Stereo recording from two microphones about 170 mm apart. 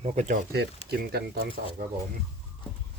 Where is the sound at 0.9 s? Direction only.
70° right (ahead or behind).